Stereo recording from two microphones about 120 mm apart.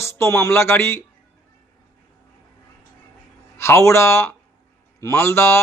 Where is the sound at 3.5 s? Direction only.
20° left (ahead or behind).